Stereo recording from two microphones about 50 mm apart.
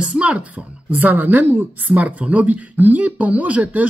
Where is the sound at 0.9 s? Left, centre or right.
Right.